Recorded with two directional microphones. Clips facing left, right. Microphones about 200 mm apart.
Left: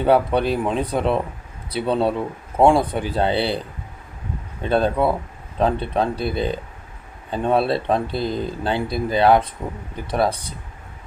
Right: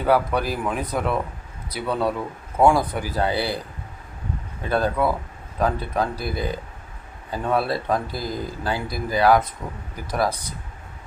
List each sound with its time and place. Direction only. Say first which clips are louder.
0.0 s speech: left 3 dB; 25° left (ahead or behind)
4.6 s speech: left 3 dB; 25° left (ahead or behind)